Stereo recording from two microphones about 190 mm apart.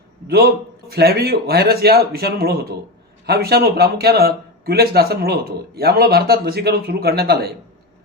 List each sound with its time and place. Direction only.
0.9 s a man's voice: 55° right (ahead or behind)